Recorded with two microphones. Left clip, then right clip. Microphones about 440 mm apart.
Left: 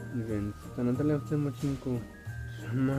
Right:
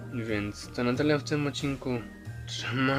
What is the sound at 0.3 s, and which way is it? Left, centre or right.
A man's voice, right.